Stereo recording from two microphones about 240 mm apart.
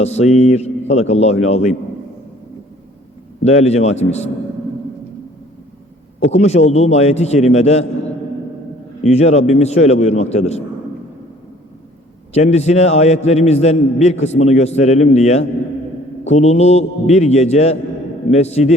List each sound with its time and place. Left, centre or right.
0.0 s a man's voice: left
3.4 s a man's voice: left
6.1 s a man's voice: left
9.0 s a man's voice: left
12.3 s a man's voice: left